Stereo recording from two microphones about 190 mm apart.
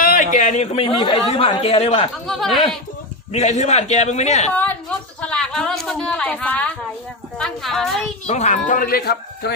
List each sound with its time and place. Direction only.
0.0 s a man's voice: 45° left (ahead or behind)
2.2 s a woman's voice: centre (ahead or behind)
3.3 s a man's voice: 35° left (ahead or behind)
5.2 s a woman's voice: 5° left (ahead or behind)
8.3 s speech: 40° left (ahead or behind); by 9.5 s 55° left (ahead or behind)